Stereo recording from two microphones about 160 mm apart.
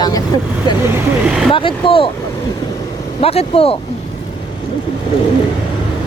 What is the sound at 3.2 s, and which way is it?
Speech, 40° left (ahead or behind).